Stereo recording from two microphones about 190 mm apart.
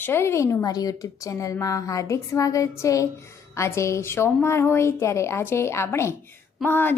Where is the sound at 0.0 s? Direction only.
10° left (ahead or behind).